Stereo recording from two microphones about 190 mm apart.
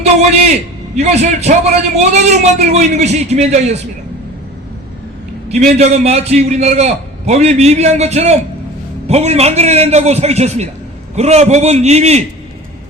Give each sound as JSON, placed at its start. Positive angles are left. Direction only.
{"t": 0.9, "sound": "a man's voice", "side_deg": -35}
{"t": 5.5, "sound": "a man's voice", "side_deg": -35}